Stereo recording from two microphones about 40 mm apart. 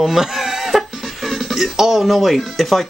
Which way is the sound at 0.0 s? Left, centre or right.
Centre.